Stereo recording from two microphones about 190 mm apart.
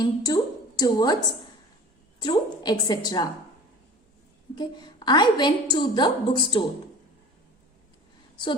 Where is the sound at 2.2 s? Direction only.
20° left (ahead or behind).